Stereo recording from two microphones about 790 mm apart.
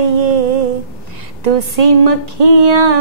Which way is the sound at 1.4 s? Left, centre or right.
Right.